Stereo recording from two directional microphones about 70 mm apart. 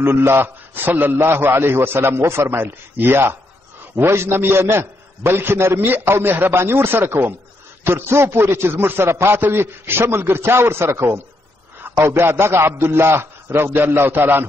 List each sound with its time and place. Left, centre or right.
0.0 s a man's voice: right